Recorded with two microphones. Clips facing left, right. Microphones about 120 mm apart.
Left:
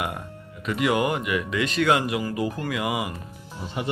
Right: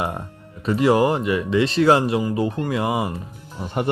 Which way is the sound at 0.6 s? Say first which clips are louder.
Right 6 dB; 30° right (ahead or behind).